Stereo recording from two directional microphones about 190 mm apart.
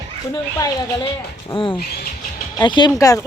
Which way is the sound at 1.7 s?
55° left (ahead or behind).